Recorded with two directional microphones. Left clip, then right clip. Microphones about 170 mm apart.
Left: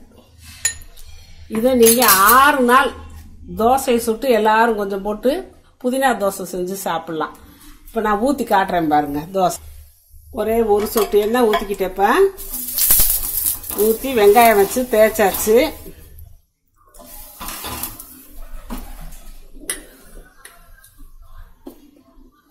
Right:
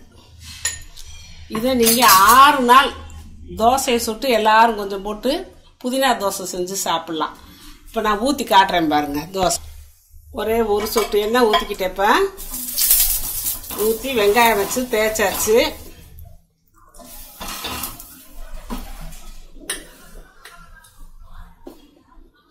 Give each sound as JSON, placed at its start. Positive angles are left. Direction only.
{"t": 1.6, "sound": "a woman's voice", "side_deg": 55}
{"t": 10.3, "sound": "speech", "side_deg": 50}
{"t": 14.0, "sound": "speech", "side_deg": 70}